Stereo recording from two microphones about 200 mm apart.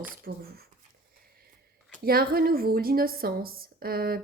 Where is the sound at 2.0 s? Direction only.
50° right (ahead or behind).